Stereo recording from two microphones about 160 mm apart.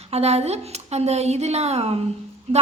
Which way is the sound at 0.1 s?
40° right (ahead or behind).